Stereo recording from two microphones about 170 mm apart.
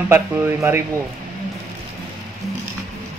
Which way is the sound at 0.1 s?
15° right (ahead or behind).